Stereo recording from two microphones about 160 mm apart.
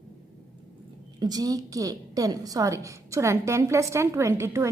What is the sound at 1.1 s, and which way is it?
A woman's voice, 25° right (ahead or behind).